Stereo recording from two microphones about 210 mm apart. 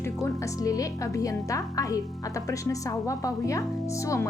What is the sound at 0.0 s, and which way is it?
A woman's voice, 15° left (ahead or behind).